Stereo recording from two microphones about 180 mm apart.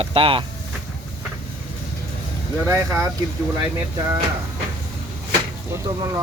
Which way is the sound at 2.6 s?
15° right (ahead or behind).